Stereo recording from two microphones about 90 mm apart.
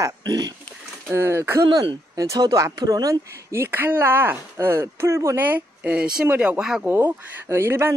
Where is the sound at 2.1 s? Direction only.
40° right (ahead or behind).